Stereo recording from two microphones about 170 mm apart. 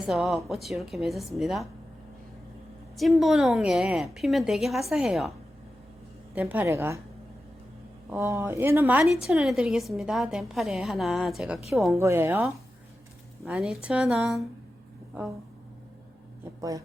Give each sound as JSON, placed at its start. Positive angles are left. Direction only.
{"t": 0.0, "sound": "a woman's voice", "side_deg": -5}
{"t": 3.0, "sound": "a woman's voice", "side_deg": 0}
{"t": 6.3, "sound": "speech", "side_deg": -10}
{"t": 8.1, "sound": "a woman's voice", "side_deg": -15}
{"t": 11.9, "sound": "a woman's voice", "side_deg": -15}
{"t": 16.6, "sound": "speech", "side_deg": -20}